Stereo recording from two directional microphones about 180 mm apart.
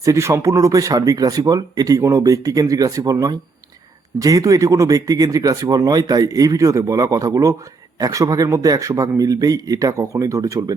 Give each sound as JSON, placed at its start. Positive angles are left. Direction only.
{"t": 0.0, "sound": "speech", "side_deg": -15}